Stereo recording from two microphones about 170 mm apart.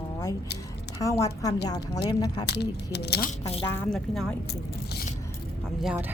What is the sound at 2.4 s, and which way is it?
Speech, 75° left (ahead or behind).